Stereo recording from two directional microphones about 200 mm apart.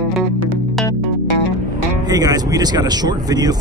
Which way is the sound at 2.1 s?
20° right (ahead or behind).